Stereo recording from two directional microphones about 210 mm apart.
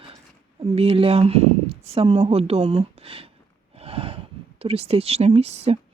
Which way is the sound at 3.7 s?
30° right (ahead or behind).